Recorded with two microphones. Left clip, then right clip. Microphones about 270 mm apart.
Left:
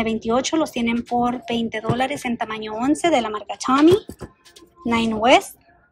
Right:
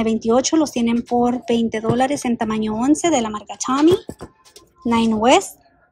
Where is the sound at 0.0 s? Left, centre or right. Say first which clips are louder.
Right 4 dB; centre.